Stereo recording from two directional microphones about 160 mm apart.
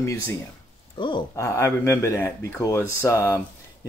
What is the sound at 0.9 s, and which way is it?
Speech, 30° left (ahead or behind).